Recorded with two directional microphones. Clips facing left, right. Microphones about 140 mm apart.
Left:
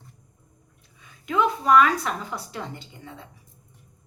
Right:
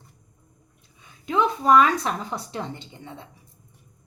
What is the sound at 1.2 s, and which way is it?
A woman's voice, 25° right (ahead or behind).